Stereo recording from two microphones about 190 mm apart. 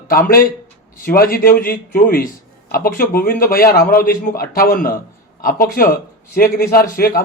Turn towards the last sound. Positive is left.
turn(degrees=50)  # may be behind; listen again after turning